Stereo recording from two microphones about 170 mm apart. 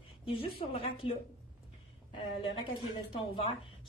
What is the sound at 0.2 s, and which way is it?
Speech, 30° left (ahead or behind).